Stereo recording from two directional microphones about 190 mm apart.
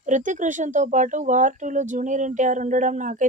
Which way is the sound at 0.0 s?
40° right (ahead or behind).